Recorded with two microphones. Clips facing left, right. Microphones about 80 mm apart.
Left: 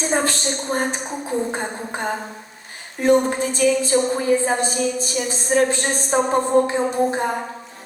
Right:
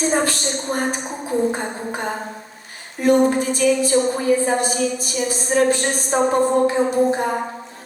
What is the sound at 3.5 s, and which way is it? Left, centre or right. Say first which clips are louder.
A woman's voice: right 1 dB; left.